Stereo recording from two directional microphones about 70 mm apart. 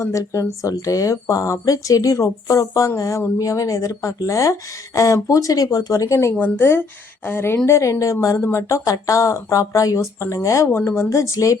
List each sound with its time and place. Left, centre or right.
0.0 s speech: left
6.4 s a woman's voice: left
10.7 s a woman's voice: left